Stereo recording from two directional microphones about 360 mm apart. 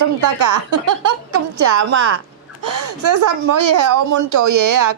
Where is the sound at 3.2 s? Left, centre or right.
Right.